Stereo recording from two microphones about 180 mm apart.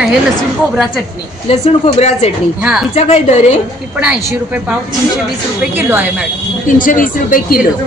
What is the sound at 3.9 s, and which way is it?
Speech, 5° right (ahead or behind).